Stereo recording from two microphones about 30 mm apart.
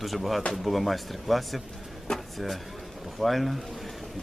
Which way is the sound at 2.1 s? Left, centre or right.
Left.